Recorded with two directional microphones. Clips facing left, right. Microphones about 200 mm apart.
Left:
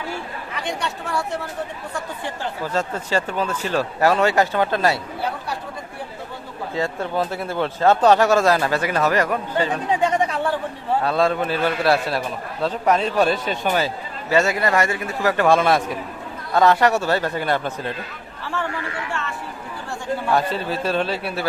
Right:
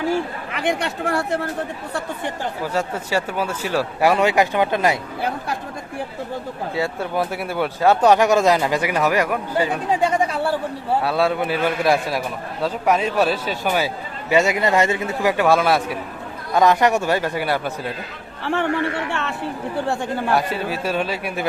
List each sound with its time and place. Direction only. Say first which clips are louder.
0.6 s speech: right 6 dB; 55° right (ahead or behind)
2.2 s speech: right 2 dB; 10° right (ahead or behind)
6.7 s speech: even; 10° right (ahead or behind)
18.4 s speech: right 7 dB; 65° right (ahead or behind)
20.3 s speech: left 1 dB; 10° right (ahead or behind)